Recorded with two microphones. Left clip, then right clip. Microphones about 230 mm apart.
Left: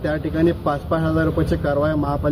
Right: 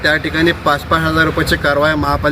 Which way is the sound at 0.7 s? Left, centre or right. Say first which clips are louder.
Right 7 dB; centre.